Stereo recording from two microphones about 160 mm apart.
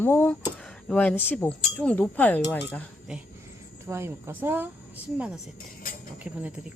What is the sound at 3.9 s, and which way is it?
Speech, 15° right (ahead or behind).